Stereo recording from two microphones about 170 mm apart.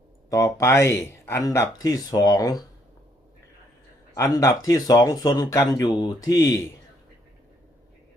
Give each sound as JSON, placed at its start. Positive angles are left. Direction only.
{"t": 0.3, "sound": "speech", "side_deg": 20}
{"t": 4.1, "sound": "speech", "side_deg": 20}